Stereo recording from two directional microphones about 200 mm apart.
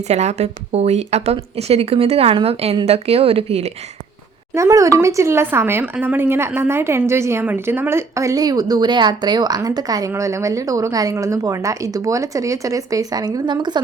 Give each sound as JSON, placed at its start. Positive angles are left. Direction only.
{"t": 0.1, "sound": "speech", "side_deg": -35}
{"t": 4.5, "sound": "speech", "side_deg": -15}